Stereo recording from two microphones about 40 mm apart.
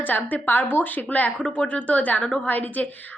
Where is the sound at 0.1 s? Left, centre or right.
Left.